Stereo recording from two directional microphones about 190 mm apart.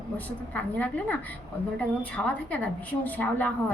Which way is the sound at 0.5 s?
10° left (ahead or behind).